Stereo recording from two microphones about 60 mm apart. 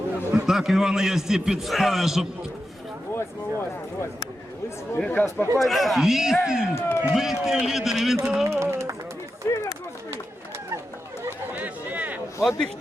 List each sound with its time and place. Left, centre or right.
0.4 s a man's voice: centre
3.1 s speech: left
4.9 s speech: left
5.5 s a man's voice: centre
6.8 s speech: left
7.1 s a man's voice: centre
8.4 s a sound: right
9.5 s a sound: left
11.5 s chatter: right
12.4 s a man's voice: centre